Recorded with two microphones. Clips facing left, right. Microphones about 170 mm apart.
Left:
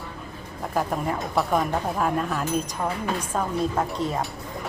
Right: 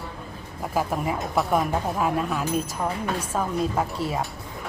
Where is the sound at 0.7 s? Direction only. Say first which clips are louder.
Even; 5° right (ahead or behind).